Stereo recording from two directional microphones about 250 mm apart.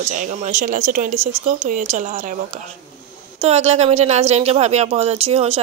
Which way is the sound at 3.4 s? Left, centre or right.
Right.